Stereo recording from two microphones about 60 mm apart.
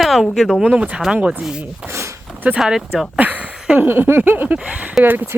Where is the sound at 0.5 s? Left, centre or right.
Centre.